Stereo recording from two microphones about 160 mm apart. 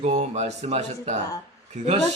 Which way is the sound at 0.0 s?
45° right (ahead or behind).